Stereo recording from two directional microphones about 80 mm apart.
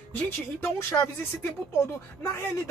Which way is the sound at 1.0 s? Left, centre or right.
Left.